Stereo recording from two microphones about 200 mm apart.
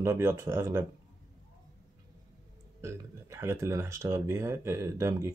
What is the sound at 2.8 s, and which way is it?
Speech, 15° right (ahead or behind).